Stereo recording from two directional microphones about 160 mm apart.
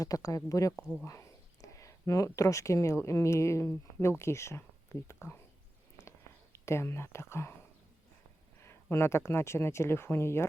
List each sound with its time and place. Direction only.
0.0 s speech: 20° left (ahead or behind)
6.0 s whispering: 15° left (ahead or behind)
8.6 s speech: 15° left (ahead or behind)